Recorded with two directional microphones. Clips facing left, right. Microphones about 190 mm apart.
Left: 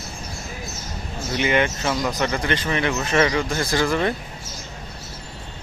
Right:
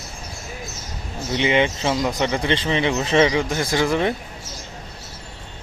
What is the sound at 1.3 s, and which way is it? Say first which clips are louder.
Speech: right 2 dB; 20° right (ahead or behind).